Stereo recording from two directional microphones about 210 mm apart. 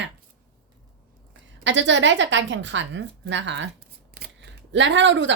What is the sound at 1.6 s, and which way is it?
A woman's voice, 60° right (ahead or behind).